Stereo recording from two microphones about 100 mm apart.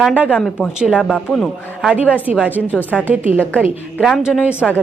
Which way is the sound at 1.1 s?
5° left (ahead or behind).